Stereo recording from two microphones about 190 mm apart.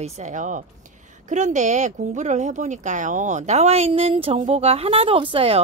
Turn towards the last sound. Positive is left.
turn(degrees=-30)  # may be behind; listen again after turning